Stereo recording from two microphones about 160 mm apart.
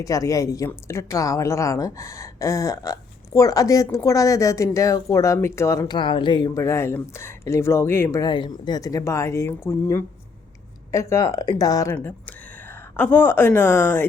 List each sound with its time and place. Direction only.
0.0 s a woman's voice: 20° left (ahead or behind)
11.9 s speech: 10° left (ahead or behind)